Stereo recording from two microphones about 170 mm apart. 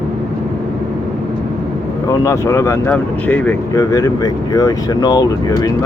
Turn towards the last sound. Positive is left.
turn(degrees=20)  # may be behind; listen again after turning